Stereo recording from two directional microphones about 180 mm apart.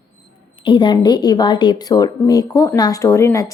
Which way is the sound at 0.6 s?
25° left (ahead or behind).